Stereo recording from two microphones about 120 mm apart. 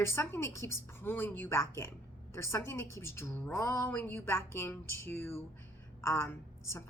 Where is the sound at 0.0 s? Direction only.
20° left (ahead or behind).